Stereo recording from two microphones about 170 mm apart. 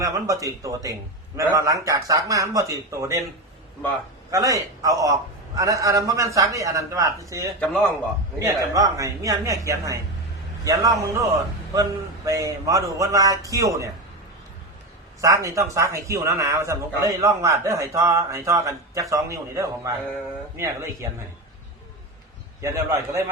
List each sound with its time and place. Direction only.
0.0 s a man's voice: 20° right (ahead or behind)
4.3 s a man's voice: 20° right (ahead or behind)
7.6 s a man's voice: 5° left (ahead or behind)
8.4 s a man's voice: 20° right (ahead or behind)
15.2 s a man's voice: 20° right (ahead or behind)
22.6 s a man's voice: 15° right (ahead or behind)